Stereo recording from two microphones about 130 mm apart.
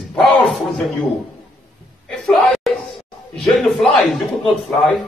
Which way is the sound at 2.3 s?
Centre (ahead or behind).